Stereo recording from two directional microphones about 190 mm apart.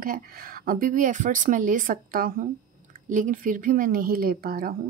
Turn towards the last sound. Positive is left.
turn(degrees=-50)  # may be behind; listen again after turning